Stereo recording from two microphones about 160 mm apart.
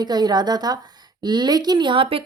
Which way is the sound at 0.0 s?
25° right (ahead or behind).